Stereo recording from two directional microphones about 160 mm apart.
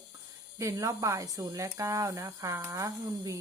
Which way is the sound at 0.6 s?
20° right (ahead or behind).